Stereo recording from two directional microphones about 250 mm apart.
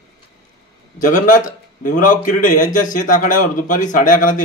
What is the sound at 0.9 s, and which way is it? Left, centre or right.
Speech, left.